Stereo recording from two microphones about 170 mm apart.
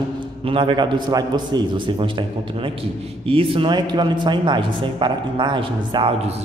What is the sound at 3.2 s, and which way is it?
Speech, 35° right (ahead or behind).